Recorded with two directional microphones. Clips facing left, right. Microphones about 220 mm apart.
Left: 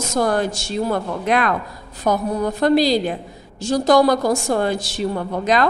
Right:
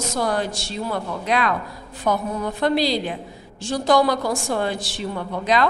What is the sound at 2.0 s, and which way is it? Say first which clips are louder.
Speech: left 4 dB; 40° left (ahead or behind).